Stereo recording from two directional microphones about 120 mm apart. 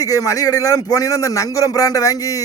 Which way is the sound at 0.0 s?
30° left (ahead or behind).